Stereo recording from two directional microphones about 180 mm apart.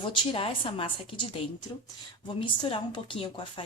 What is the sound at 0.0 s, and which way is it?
A woman's voice, 30° left (ahead or behind).